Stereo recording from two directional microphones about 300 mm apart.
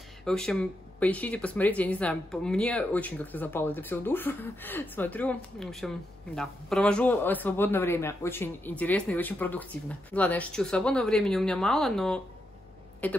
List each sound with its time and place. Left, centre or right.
0.2 s a man's voice: centre